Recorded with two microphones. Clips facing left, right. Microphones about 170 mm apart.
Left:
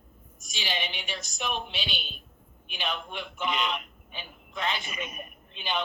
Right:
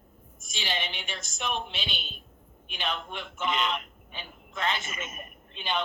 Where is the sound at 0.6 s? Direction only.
15° left (ahead or behind).